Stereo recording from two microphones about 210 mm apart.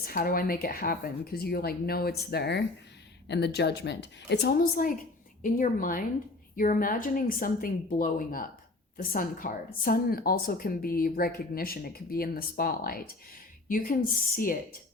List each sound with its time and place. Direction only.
0.0 s a woman's voice: 45° left (ahead or behind)